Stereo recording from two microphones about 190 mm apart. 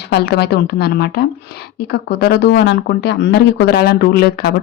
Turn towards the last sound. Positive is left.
turn(degrees=55)  # may be behind; listen again after turning